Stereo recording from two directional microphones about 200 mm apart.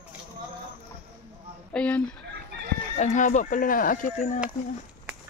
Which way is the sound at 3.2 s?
40° left (ahead or behind).